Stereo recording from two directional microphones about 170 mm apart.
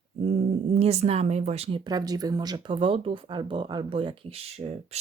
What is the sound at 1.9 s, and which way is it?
Speech, 20° right (ahead or behind).